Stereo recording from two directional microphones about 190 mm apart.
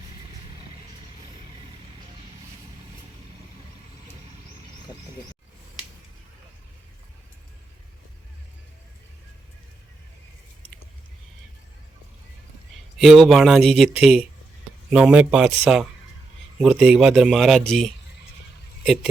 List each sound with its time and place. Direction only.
13.0 s speech: centre (ahead or behind)